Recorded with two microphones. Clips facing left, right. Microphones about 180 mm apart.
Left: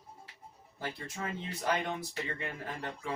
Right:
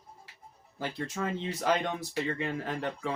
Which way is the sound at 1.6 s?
90° right.